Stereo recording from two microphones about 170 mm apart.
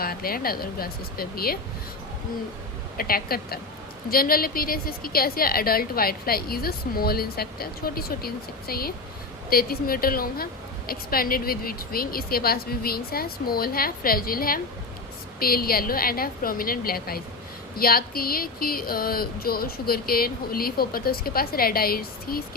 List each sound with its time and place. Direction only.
0.0 s a woman's voice: 60° left (ahead or behind)
3.0 s a woman's voice: 60° left (ahead or behind)